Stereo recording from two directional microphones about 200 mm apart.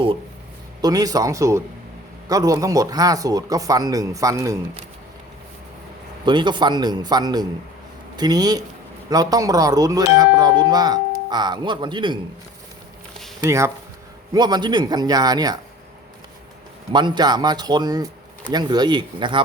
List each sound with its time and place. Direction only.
0.8 s speech: 20° right (ahead or behind)
6.2 s a man's voice: 20° right (ahead or behind)
13.4 s a man's voice: 15° right (ahead or behind)
16.9 s a man's voice: 20° right (ahead or behind)